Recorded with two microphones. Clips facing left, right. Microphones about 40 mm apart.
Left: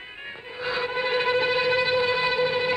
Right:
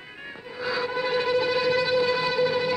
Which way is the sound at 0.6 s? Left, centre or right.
Left.